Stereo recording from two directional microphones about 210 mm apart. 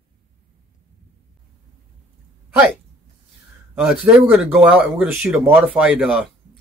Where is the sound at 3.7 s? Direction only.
5° right (ahead or behind).